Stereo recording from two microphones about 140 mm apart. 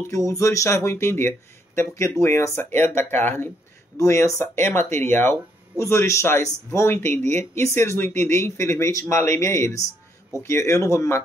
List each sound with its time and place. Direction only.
0.0 s speech: 20° left (ahead or behind)